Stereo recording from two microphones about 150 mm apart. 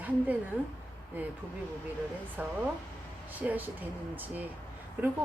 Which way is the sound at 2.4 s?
10° right (ahead or behind).